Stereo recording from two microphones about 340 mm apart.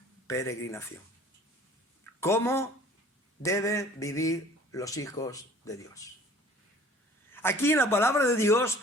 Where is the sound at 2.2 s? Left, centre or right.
Centre.